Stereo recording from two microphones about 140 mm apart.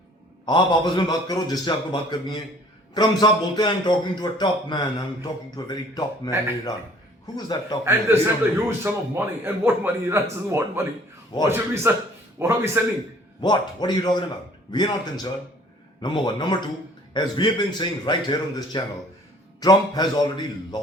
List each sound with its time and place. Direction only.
0.4 s a man's voice: 35° left (ahead or behind)
7.3 s a man's voice: 30° left (ahead or behind)
7.9 s a man's voice: 15° right (ahead or behind)
11.4 s a man's voice: 15° right (ahead or behind)
13.4 s a man's voice: 30° left (ahead or behind)